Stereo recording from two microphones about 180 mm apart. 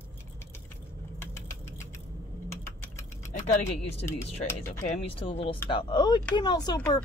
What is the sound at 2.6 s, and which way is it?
Typing, 15° left (ahead or behind).